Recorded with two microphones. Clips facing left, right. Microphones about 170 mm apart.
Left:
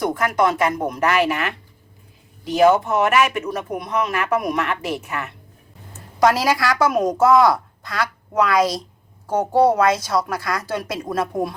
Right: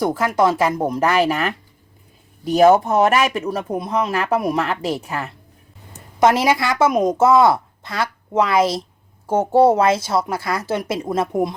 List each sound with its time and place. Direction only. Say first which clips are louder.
0.1 s speech: right 2 dB; 30° right (ahead or behind)
6.1 s a woman's voice: right 2 dB; 25° right (ahead or behind)